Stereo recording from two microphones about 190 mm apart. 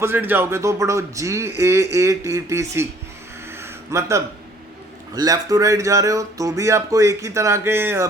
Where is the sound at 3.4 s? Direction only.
15° right (ahead or behind).